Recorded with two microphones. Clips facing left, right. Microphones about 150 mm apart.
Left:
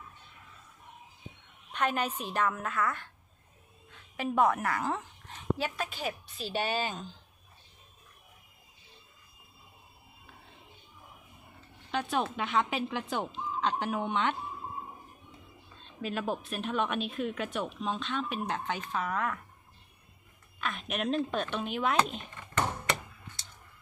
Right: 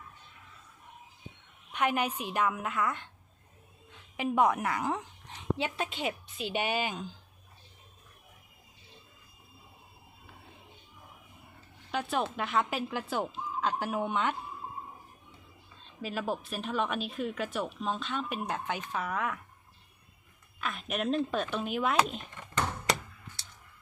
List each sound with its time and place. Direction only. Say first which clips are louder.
1.7 s a woman's voice: right 1 dB; 15° right (ahead or behind)
4.2 s a woman's voice: even; 15° right (ahead or behind)
11.9 s a woman's voice: even; 5° right (ahead or behind)
15.8 s a woman's voice: left 1 dB; 5° right (ahead or behind)
20.6 s a woman's voice: even; centre (ahead or behind)